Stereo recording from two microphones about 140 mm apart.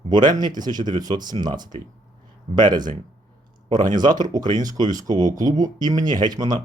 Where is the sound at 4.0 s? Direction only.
30° right (ahead or behind).